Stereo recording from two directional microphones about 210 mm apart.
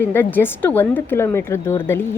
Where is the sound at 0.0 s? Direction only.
10° left (ahead or behind).